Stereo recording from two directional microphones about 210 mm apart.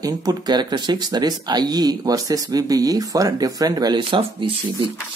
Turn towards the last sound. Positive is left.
turn(degrees=-25)  # may be behind; listen again after turning